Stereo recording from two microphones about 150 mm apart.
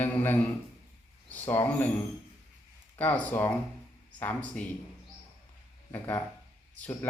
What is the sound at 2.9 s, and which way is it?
Speech, 10° left (ahead or behind).